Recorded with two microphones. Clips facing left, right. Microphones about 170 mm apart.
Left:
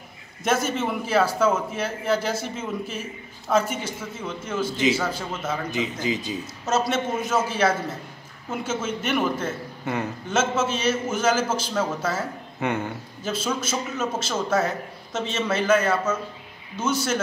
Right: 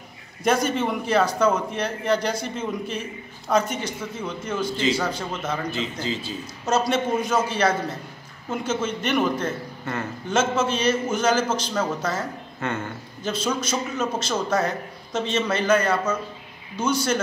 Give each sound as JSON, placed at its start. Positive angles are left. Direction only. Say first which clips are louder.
{"t": 0.4, "sound": "a man's voice", "louder": "right 2 dB", "side_deg": 5}
{"t": 6.6, "sound": "a man's voice", "louder": "right 2 dB", "side_deg": 5}
{"t": 13.2, "sound": "a man's voice", "louder": "right 1 dB", "side_deg": 5}